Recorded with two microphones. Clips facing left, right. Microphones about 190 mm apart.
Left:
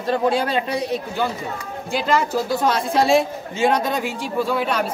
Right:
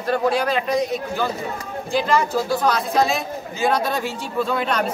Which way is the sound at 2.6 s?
30° left (ahead or behind).